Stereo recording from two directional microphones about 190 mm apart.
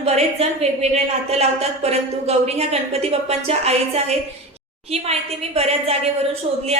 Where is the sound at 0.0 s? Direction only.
35° right (ahead or behind).